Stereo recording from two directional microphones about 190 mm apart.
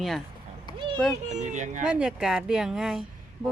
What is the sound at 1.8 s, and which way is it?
Speech, 5° right (ahead or behind).